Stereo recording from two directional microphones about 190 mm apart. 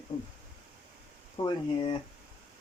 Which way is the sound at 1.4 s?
25° left (ahead or behind).